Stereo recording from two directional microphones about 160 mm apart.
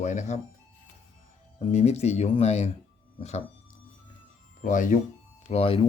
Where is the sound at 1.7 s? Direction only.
40° left (ahead or behind).